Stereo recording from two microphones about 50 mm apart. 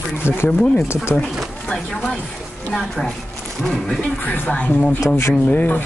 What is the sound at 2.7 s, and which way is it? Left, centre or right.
Speech, centre.